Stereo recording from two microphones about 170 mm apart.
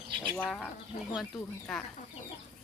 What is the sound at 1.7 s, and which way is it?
Speech, centre (ahead or behind).